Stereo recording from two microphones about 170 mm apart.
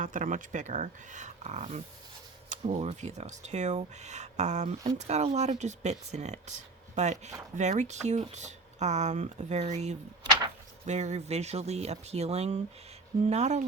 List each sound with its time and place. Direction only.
0.0 s speech: 50° right (ahead or behind)